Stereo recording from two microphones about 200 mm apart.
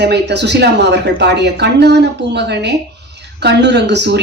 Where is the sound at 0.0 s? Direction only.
55° right (ahead or behind).